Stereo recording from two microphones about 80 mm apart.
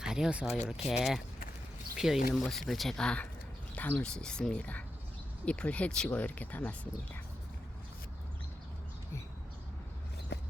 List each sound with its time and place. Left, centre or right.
0.0 s speech: centre